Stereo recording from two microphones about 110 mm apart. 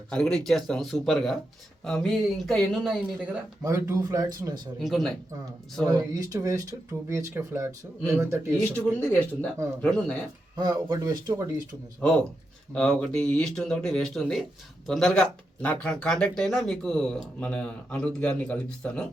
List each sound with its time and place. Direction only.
0.1 s speech: 5° left (ahead or behind)
3.6 s speech: 25° right (ahead or behind)
4.8 s speech: centre (ahead or behind)
5.8 s speech: 35° right (ahead or behind)
8.7 s speech: 15° left (ahead or behind)
9.8 s speech: 5° left (ahead or behind)
10.5 s speech: 40° right (ahead or behind)
12.0 s speech: 10° left (ahead or behind)